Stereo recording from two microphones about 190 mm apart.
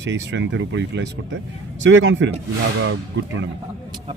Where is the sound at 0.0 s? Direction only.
70° right (ahead or behind).